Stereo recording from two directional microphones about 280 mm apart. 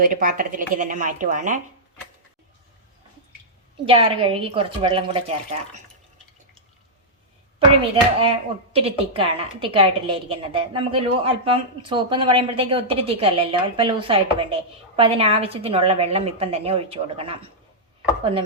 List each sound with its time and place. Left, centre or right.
0.0 s a woman's voice: right
3.8 s a woman's voice: centre
8.2 s a woman's voice: centre